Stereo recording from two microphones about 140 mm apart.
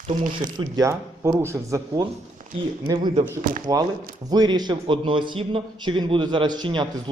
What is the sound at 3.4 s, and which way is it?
Speech, 80° right.